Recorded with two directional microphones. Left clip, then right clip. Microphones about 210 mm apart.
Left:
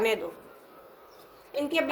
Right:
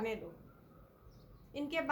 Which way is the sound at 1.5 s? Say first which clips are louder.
Left 10 dB; 40° left (ahead or behind).